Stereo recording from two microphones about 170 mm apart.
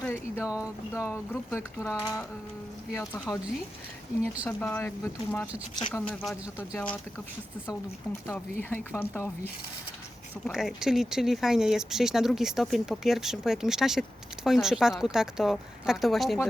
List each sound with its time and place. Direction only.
0.0 s a sound: 15° left (ahead or behind)
0.4 s speech: 5° right (ahead or behind)
1.0 s speech: 15° left (ahead or behind)
3.2 s speech: centre (ahead or behind)
10.4 s speech: centre (ahead or behind)